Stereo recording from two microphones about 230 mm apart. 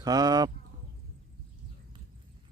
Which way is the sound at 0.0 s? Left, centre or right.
Centre.